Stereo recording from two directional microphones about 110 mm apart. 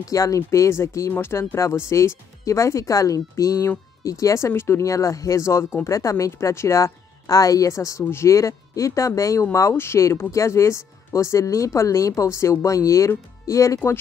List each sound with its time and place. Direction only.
0.0 s speech: 30° left (ahead or behind)